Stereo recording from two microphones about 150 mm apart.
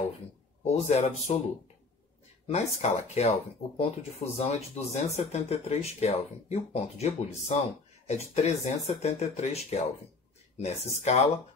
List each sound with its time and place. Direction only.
0.7 s speech: 45° left (ahead or behind)
2.4 s speech: 45° left (ahead or behind)